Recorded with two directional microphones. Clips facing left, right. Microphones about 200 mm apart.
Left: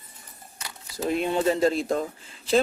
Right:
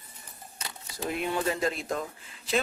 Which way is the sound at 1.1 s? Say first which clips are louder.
Left 6 dB; 25° left (ahead or behind).